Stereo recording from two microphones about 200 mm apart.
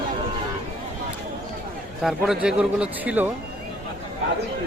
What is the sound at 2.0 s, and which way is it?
Speech, centre (ahead or behind).